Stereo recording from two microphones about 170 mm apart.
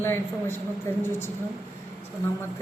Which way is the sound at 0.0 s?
15° left (ahead or behind).